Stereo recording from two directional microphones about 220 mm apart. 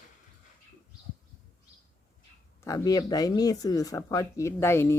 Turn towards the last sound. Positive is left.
turn(degrees=10)  # may be behind; listen again after turning